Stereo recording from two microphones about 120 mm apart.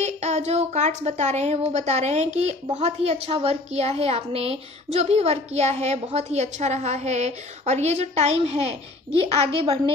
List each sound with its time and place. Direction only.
0.0 s a woman's voice: 70° right (ahead or behind); by 9.8 s 50° right (ahead or behind)